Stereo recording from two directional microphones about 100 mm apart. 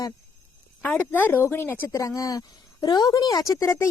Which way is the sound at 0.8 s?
15° left (ahead or behind).